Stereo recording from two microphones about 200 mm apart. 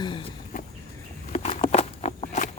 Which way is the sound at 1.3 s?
35° left (ahead or behind).